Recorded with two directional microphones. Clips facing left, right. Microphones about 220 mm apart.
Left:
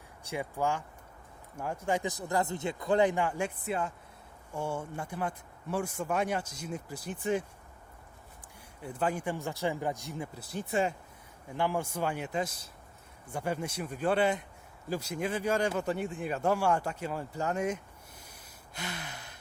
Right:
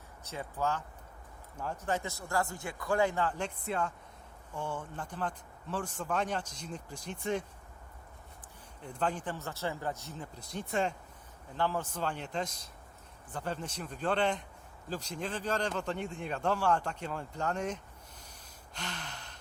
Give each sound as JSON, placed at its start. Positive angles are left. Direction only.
{"t": 0.3, "sound": "speech", "side_deg": 15}
{"t": 8.8, "sound": "speech", "side_deg": 5}
{"t": 18.7, "sound": "gasp", "side_deg": 10}